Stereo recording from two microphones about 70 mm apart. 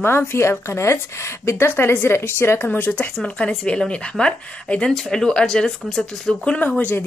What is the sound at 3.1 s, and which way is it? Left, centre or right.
Speech, centre.